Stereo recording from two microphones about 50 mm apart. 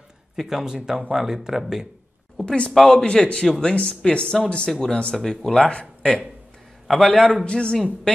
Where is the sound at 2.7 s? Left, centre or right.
Centre.